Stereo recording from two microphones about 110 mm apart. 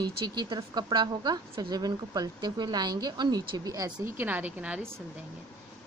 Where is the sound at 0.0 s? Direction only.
40° right (ahead or behind).